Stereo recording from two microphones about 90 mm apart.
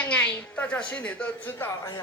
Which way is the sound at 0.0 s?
15° left (ahead or behind).